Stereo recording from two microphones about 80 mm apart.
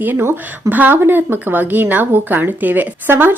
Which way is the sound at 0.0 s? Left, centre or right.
Right.